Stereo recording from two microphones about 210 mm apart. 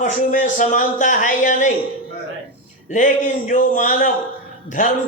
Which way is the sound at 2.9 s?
40° left (ahead or behind).